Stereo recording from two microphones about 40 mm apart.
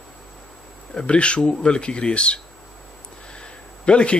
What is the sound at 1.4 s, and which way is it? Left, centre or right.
Speech, centre.